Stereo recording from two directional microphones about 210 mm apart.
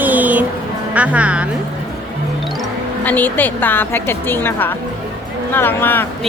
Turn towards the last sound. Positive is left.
turn(degrees=10)  # may be behind; listen again after turning